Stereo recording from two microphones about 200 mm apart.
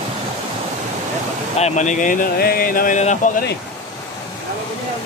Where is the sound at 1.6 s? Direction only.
35° left (ahead or behind).